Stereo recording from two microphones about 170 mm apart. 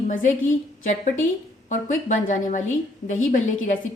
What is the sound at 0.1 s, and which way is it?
Speech, 50° left (ahead or behind).